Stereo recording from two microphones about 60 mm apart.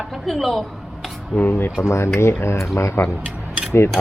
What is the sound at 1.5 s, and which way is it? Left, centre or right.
A man's voice, left.